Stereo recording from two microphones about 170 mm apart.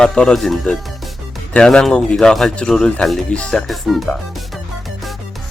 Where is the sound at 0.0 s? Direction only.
5° left (ahead or behind).